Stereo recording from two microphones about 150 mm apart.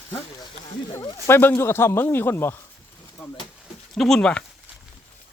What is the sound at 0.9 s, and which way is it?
Speech, 25° left (ahead or behind).